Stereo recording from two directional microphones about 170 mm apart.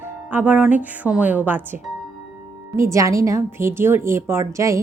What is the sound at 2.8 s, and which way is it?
A woman's voice, 20° right (ahead or behind).